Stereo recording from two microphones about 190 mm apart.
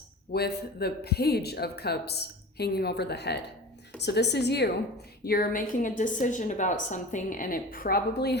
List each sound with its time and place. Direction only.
0.3 s speech: 55° left (ahead or behind)
5.2 s a woman's voice: 50° left (ahead or behind)